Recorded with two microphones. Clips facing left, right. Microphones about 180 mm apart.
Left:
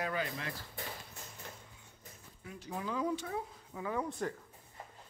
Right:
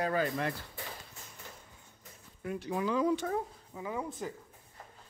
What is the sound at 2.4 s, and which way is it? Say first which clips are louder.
Speech: right 8 dB; 65° right (ahead or behind).